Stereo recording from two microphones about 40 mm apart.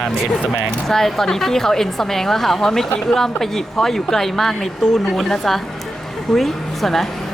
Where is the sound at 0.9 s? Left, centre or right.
Centre.